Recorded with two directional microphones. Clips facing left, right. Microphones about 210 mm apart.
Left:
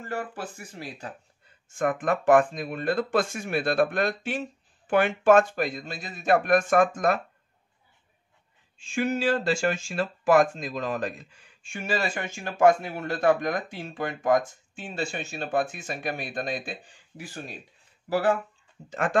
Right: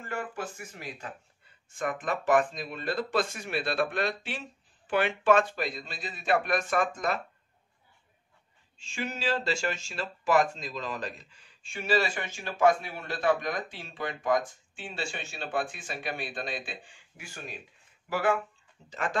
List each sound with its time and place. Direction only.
0.1 s speech: 35° left (ahead or behind)
1.7 s speech: 50° left (ahead or behind)
8.7 s speech: 50° left (ahead or behind)
18.9 s speech: 50° left (ahead or behind)